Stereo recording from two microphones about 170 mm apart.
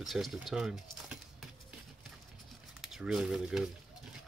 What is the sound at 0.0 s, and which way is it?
Speech, centre (ahead or behind).